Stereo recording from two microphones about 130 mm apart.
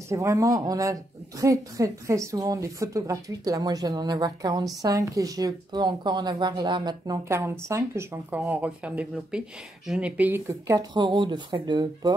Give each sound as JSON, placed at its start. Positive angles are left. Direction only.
{"t": 0.1, "sound": "speech", "side_deg": -25}
{"t": 7.2, "sound": "speech", "side_deg": -20}
{"t": 10.5, "sound": "speech", "side_deg": -25}
{"t": 10.9, "sound": "speech", "side_deg": -35}